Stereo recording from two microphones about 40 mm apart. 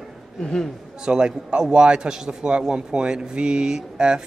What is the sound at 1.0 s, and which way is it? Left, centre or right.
Speech, right.